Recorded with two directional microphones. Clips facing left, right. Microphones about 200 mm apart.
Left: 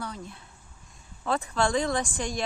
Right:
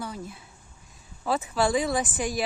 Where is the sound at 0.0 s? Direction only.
10° right (ahead or behind).